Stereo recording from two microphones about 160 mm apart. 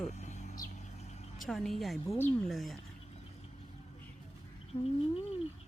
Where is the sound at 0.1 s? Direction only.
45° left (ahead or behind).